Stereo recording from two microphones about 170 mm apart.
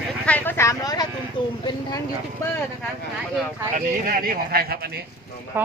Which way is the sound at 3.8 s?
55° right (ahead or behind).